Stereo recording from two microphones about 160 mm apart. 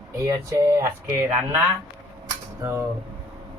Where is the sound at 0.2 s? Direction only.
15° right (ahead or behind).